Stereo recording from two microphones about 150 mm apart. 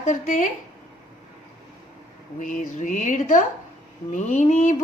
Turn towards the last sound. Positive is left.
turn(degrees=50)  # may be behind; listen again after turning